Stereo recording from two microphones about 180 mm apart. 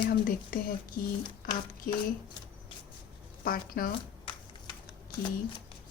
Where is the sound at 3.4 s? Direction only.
55° left (ahead or behind).